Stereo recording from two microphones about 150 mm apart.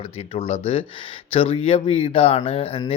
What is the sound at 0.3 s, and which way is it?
Speech, 40° left (ahead or behind).